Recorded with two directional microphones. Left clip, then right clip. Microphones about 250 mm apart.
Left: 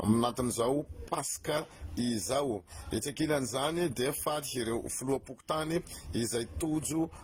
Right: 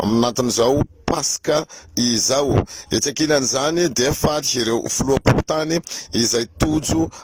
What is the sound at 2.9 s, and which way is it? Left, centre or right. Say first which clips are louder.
A man's voice: right 14 dB; right.